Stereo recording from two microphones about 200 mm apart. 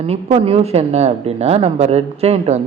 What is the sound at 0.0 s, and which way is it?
A man's voice, 30° right (ahead or behind).